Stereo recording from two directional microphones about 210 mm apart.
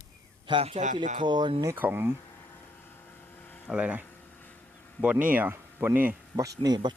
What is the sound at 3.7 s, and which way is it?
A man's voice, 5° right (ahead or behind).